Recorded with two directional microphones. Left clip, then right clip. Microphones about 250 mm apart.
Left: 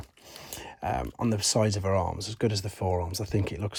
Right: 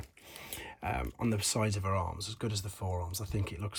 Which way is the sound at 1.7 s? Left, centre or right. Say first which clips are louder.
Left 7 dB; left.